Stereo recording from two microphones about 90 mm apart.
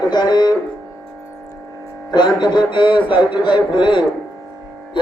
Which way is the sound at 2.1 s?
55° left (ahead or behind).